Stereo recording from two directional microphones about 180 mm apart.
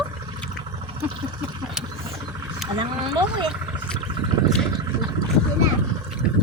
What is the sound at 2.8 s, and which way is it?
Speech, 25° right (ahead or behind).